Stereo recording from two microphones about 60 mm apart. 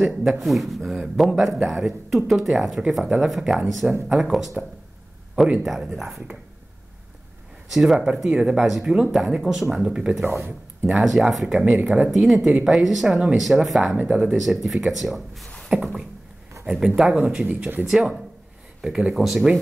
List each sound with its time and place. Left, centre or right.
0.0 s speech: centre
5.6 s speech: centre
7.7 s speech: centre
10.2 s speech: right
10.9 s speech: centre
12.1 s speech: centre
13.9 s speech: centre
14.3 s speech: centre
17.8 s speech: centre
18.9 s speech: centre